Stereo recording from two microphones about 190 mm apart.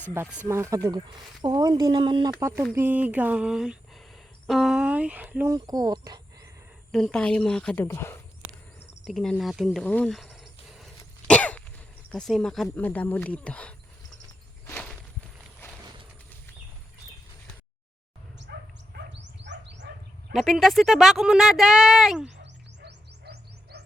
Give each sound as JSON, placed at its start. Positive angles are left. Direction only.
{"t": 0.1, "sound": "speech", "side_deg": -10}
{"t": 2.7, "sound": "speech", "side_deg": -10}
{"t": 6.9, "sound": "speech", "side_deg": 5}
{"t": 9.0, "sound": "speech", "side_deg": 0}
{"t": 11.3, "sound": "cough", "side_deg": 5}
{"t": 12.1, "sound": "speech", "side_deg": 5}
{"t": 14.7, "sound": "walk", "side_deg": 5}
{"t": 18.5, "sound": "dog", "side_deg": -65}
{"t": 20.3, "sound": "speech", "side_deg": 0}
{"t": 22.8, "sound": "music", "side_deg": -60}